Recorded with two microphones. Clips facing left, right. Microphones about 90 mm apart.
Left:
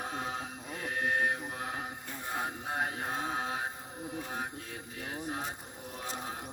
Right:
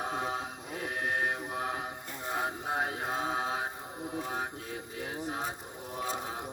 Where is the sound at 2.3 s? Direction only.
20° right (ahead or behind).